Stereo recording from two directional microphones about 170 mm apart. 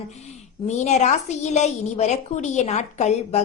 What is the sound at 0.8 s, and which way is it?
A woman's voice, 45° left (ahead or behind).